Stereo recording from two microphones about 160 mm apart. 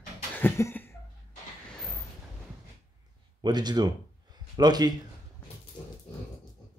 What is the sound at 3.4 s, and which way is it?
Speech, 25° right (ahead or behind).